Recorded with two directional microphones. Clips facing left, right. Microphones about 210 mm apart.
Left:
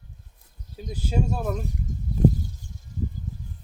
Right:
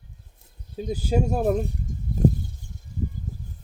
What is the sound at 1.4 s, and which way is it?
Speech, 35° right (ahead or behind).